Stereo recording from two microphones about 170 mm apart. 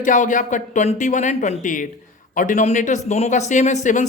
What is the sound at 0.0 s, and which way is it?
Speech, 50° left (ahead or behind).